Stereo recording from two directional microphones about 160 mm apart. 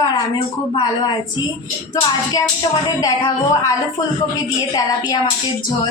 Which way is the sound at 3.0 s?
25° left (ahead or behind).